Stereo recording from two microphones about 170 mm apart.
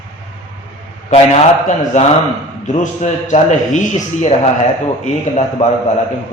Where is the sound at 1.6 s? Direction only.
45° left (ahead or behind).